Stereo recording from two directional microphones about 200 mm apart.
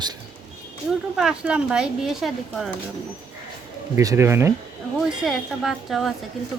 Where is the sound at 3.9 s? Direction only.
15° right (ahead or behind).